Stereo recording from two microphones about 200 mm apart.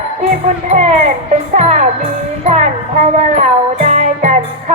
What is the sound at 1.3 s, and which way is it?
Music, 30° right (ahead or behind).